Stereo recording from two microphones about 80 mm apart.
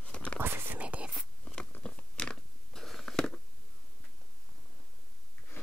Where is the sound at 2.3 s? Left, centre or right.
Centre.